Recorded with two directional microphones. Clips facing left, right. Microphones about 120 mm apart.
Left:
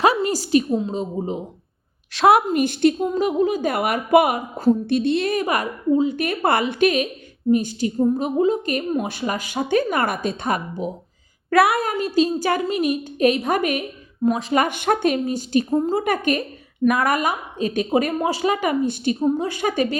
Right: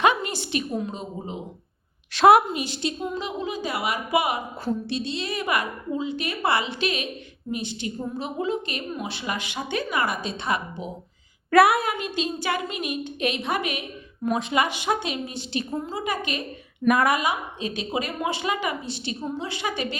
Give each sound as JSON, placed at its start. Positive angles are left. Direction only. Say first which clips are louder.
{"t": 0.0, "sound": "a sound", "louder": "left 4 dB", "side_deg": 35}
{"t": 0.8, "sound": "a woman's voice", "louder": "left 7 dB", "side_deg": 30}
{"t": 2.1, "sound": "a woman's voice", "louder": "even", "side_deg": 0}
{"t": 2.5, "sound": "a woman's voice", "louder": "left 11 dB", "side_deg": 50}
{"t": 11.5, "sound": "a woman's voice", "louder": "even", "side_deg": 0}
{"t": 11.8, "sound": "a woman's voice", "louder": "left 7 dB", "side_deg": 40}
{"t": 16.8, "sound": "a woman's voice", "louder": "left 2 dB", "side_deg": 0}
{"t": 17.2, "sound": "a woman's voice", "louder": "left 4 dB", "side_deg": 45}